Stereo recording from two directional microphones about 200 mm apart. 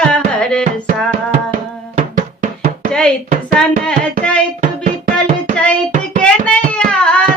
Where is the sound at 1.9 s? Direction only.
35° right (ahead or behind).